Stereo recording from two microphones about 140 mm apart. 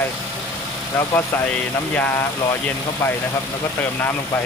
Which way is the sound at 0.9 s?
15° left (ahead or behind).